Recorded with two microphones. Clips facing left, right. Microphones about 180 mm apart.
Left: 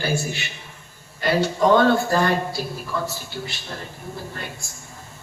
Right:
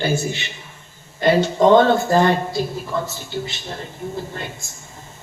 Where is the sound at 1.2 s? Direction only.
20° right (ahead or behind).